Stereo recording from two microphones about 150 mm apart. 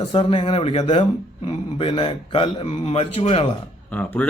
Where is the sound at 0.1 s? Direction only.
35° left (ahead or behind).